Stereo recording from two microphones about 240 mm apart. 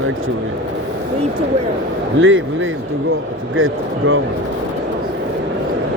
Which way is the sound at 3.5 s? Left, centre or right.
Right.